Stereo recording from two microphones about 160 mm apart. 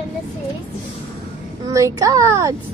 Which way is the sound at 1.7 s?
20° right (ahead or behind).